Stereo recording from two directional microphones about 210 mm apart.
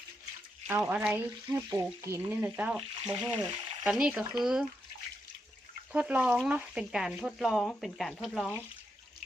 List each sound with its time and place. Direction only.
0.7 s frying: 5° right (ahead or behind)
3.8 s speech: 5° right (ahead or behind)
5.9 s speech: 5° right (ahead or behind)